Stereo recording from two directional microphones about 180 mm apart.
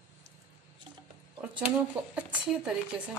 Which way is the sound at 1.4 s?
10° right (ahead or behind).